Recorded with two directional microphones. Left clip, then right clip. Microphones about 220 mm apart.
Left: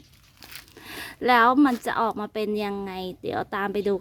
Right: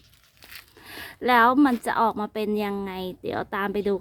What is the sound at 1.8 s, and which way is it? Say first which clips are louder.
A woman's voice: right 2 dB; 5° left (ahead or behind).